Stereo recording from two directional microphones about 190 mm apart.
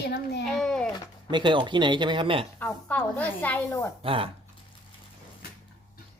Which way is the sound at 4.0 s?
30° right (ahead or behind).